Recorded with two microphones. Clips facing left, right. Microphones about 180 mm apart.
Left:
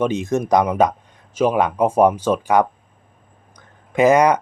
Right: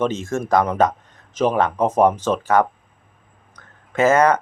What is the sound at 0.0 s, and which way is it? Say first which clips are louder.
Speech: left 2 dB; 15° left (ahead or behind).